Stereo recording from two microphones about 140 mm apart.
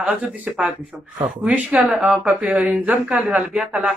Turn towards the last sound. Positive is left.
turn(degrees=-10)  # may be behind; listen again after turning